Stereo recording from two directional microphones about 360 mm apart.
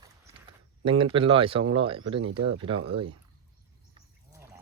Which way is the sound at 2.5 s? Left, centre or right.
Centre.